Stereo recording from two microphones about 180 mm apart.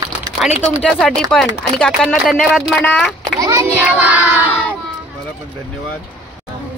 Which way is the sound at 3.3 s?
15° right (ahead or behind).